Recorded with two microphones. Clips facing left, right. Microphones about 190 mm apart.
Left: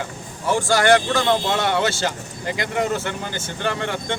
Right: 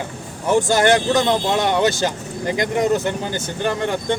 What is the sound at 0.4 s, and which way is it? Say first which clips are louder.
Speech: right 2 dB; 20° right (ahead or behind).